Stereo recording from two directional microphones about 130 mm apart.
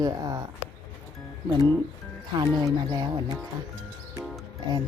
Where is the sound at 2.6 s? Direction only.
30° right (ahead or behind).